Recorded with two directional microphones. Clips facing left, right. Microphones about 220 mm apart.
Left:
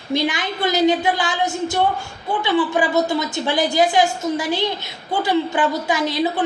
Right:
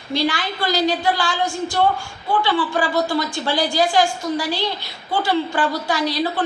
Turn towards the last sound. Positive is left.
turn(degrees=20)  # may be behind; listen again after turning